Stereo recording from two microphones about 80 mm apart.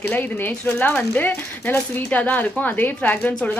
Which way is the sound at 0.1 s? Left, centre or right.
Left.